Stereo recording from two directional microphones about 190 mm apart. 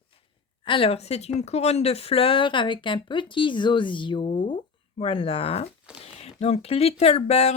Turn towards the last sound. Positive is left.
turn(degrees=35)  # may be behind; listen again after turning